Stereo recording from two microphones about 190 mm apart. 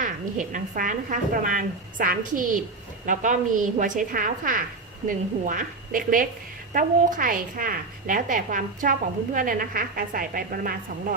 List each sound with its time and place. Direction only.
0.0 s a woman's voice: 40° right (ahead or behind)